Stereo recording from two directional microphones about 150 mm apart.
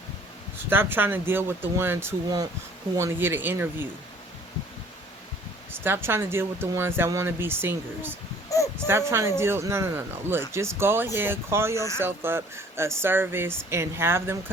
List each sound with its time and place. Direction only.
0.7 s speech: 15° right (ahead or behind)
5.7 s speech: 15° right (ahead or behind)
8.5 s a sound: 20° left (ahead or behind)
8.9 s speech: 15° right (ahead or behind)